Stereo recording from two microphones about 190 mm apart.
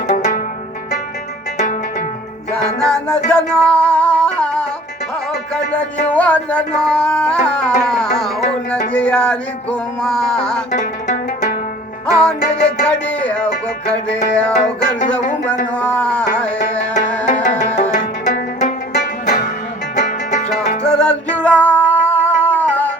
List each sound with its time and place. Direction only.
0.1 s music: 40° left (ahead or behind)
1.5 s zither: 40° left (ahead or behind)
2.8 s music: 5° left (ahead or behind)
10.7 s music: 40° left (ahead or behind)
12.8 s music: 5° left (ahead or behind)
14.5 s music: 40° left (ahead or behind)
15.7 s music: 5° left (ahead or behind)
17.9 s music: 40° left (ahead or behind)
20.8 s music: 5° left (ahead or behind)